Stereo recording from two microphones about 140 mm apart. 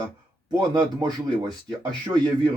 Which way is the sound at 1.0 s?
30° right (ahead or behind).